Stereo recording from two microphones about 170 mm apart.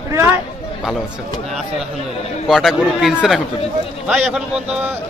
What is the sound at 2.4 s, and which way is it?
Speech, centre (ahead or behind).